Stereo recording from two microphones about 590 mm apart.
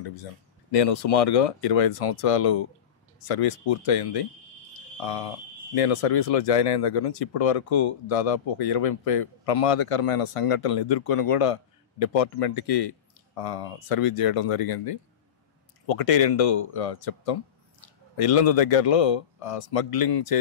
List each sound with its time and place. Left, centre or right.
0.0 s speech: left